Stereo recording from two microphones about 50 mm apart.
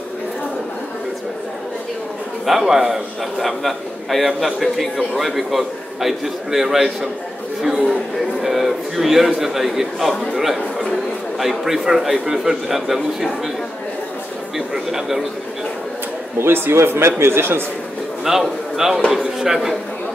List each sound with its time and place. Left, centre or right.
2.4 s a man's voice: centre
10.4 s chatter: centre
11.3 s a man's voice: centre
14.7 s a man's voice: centre
16.3 s a man's voice: right
18.2 s a man's voice: centre